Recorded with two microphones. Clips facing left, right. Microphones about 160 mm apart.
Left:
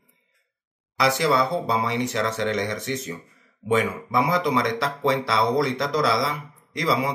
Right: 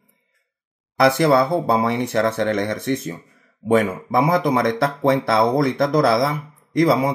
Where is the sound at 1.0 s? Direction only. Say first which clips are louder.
Right 6 dB; 55° right (ahead or behind).